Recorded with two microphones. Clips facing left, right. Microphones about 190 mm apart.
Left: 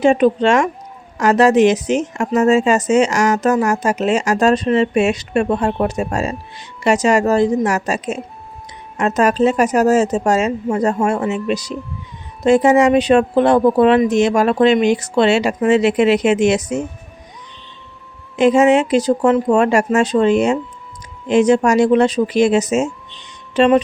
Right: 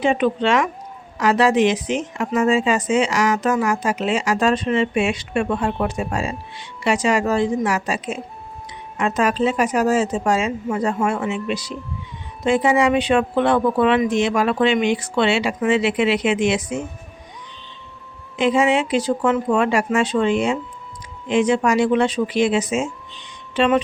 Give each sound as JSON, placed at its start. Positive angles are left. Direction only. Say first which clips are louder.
{"t": 0.0, "sound": "a woman's voice", "louder": "left 6 dB", "side_deg": 40}
{"t": 18.3, "sound": "a woman's voice", "louder": "left 6 dB", "side_deg": 45}